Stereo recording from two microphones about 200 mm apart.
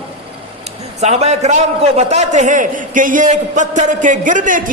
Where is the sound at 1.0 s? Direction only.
35° right (ahead or behind).